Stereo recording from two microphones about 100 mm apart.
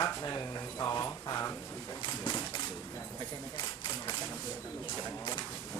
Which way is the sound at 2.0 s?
45° left (ahead or behind).